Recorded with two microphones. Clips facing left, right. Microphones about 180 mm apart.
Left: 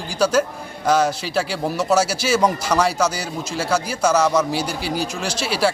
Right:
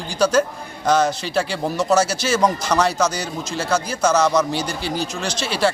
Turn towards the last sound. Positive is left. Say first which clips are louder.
# even
turn(degrees=5)  # may be behind; listen again after turning